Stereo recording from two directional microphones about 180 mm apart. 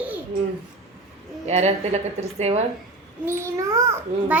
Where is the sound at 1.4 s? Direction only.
40° right (ahead or behind).